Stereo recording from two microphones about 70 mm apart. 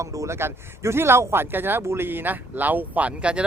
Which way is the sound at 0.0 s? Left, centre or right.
Right.